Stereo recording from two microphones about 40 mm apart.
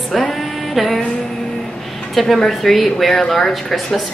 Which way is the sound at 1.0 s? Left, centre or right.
Centre.